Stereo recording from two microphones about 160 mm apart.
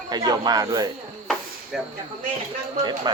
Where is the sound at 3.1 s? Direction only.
25° right (ahead or behind).